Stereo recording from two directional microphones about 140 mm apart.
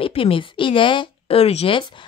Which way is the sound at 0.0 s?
40° left (ahead or behind).